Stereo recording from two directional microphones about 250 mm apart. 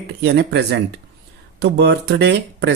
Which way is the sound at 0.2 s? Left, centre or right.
Right.